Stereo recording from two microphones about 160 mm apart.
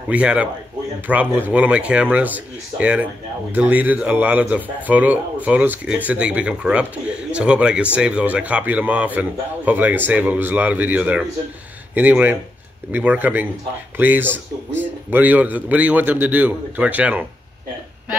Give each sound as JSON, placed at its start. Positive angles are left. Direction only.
{"t": 0.1, "sound": "a man's voice", "side_deg": -10}